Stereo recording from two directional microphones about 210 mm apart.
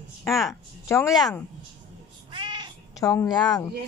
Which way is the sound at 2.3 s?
20° right (ahead or behind).